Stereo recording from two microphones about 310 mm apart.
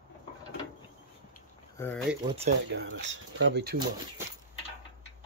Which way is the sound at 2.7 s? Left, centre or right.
Right.